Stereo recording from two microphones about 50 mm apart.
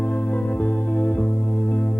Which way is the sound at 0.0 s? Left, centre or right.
Left.